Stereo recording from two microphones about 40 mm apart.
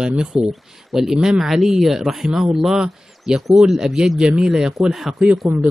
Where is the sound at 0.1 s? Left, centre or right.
Right.